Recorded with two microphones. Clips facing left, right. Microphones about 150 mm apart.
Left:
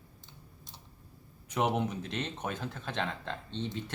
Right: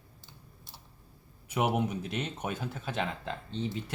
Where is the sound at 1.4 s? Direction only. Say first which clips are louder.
Right 1 dB; 10° right (ahead or behind).